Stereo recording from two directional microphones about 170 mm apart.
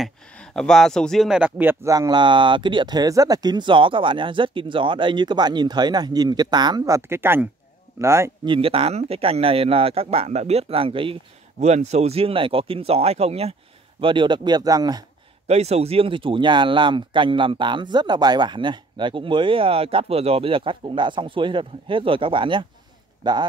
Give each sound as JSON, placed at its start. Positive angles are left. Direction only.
{"t": 0.0, "sound": "speech", "side_deg": 5}
{"t": 8.5, "sound": "speech", "side_deg": -30}
{"t": 15.4, "sound": "speech", "side_deg": -40}